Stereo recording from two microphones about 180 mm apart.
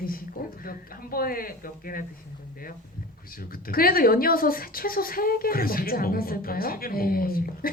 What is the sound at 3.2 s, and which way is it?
Speech, 55° left (ahead or behind).